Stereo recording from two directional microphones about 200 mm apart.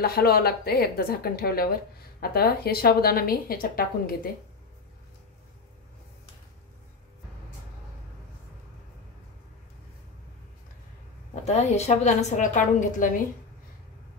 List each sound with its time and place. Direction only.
0.0 s a woman's voice: 50° left (ahead or behind)
11.4 s a woman's voice: 35° left (ahead or behind)